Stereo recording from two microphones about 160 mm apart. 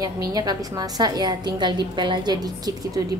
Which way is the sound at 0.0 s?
25° right (ahead or behind).